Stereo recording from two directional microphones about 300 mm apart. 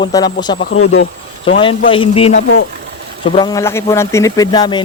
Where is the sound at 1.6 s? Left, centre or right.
Centre.